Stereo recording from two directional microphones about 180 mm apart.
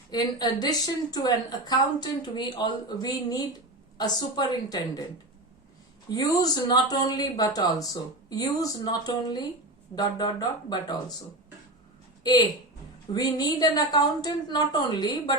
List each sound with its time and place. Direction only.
0.1 s speech: 20° left (ahead or behind)
6.1 s speech: 20° left (ahead or behind)
12.2 s speech: 20° left (ahead or behind)